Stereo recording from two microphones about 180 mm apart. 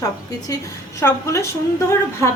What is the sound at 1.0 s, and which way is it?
Speech, 15° left (ahead or behind).